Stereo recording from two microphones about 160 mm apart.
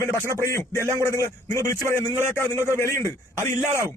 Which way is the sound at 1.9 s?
15° left (ahead or behind).